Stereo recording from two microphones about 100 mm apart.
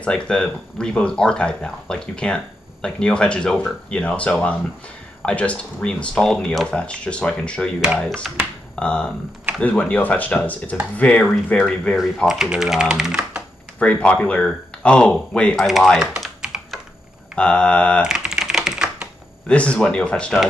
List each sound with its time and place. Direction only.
0.0 s speech: 10° left (ahead or behind)
8.7 s speech: 10° left (ahead or behind)
12.3 s speech: 5° right (ahead or behind)
13.7 s speech: 15° left (ahead or behind)
15.5 s speech: centre (ahead or behind)
16.1 s typing: 5° right (ahead or behind)
17.4 s speech: 10° left (ahead or behind)
18.0 s typing: 5° right (ahead or behind)
19.4 s speech: 10° left (ahead or behind)